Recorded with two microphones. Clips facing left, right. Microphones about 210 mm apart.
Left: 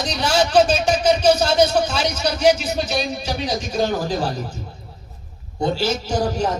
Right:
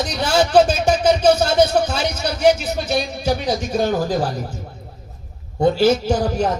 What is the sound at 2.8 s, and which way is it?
Speech, 55° right (ahead or behind).